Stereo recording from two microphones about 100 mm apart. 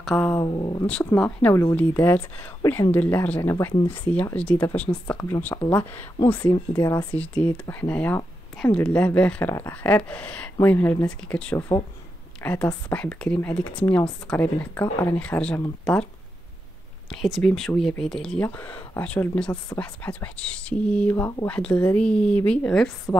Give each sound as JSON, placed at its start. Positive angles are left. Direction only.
{"t": 0.1, "sound": "speech", "side_deg": 20}
{"t": 0.4, "sound": "speech", "side_deg": 45}
{"t": 0.8, "sound": "speech", "side_deg": 10}
{"t": 1.5, "sound": "speech", "side_deg": 30}
{"t": 6.8, "sound": "speech", "side_deg": 30}
{"t": 7.1, "sound": "speech", "side_deg": 15}
{"t": 9.5, "sound": "speech", "side_deg": 25}
{"t": 9.8, "sound": "a woman's voice", "side_deg": 10}
{"t": 17.1, "sound": "speech", "side_deg": 5}
{"t": 18.5, "sound": "speech", "side_deg": 20}